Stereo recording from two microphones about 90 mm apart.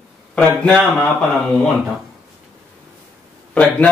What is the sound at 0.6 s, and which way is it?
Speech, 10° left (ahead or behind).